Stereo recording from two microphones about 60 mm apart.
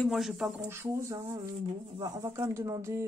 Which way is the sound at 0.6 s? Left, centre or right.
Right.